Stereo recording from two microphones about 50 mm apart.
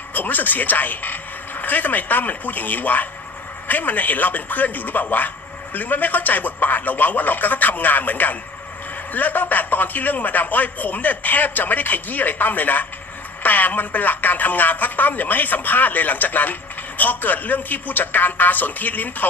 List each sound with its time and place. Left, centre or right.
0.1 s a man's voice: left